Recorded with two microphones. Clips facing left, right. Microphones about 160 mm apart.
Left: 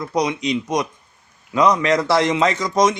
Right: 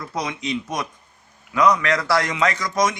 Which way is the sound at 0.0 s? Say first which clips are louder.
Left 7 dB; 20° left (ahead or behind).